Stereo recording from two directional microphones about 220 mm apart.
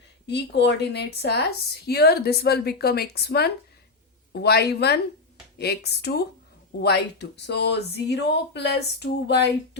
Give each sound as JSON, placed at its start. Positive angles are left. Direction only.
{"t": 0.3, "sound": "speech", "side_deg": 50}